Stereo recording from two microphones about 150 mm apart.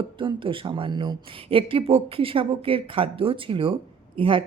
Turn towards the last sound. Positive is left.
turn(degrees=-35)  # may be behind; listen again after turning